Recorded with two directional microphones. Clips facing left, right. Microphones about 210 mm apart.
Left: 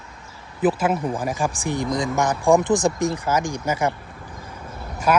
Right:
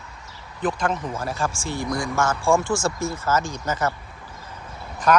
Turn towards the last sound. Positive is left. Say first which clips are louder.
# right 1 dB
turn(degrees=10)  # may be behind; listen again after turning